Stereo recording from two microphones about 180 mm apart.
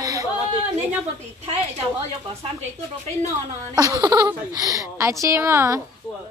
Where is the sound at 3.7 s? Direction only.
20° right (ahead or behind).